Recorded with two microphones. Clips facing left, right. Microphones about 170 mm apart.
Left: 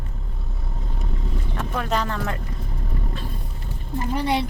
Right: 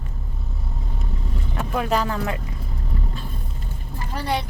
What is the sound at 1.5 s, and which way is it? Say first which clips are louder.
Speech: right 3 dB; 5° right (ahead or behind).